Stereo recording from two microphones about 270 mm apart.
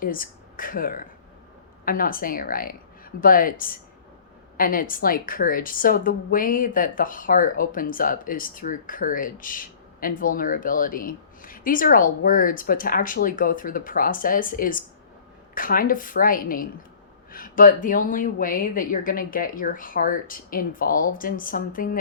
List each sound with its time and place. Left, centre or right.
0.0 s a woman's voice: left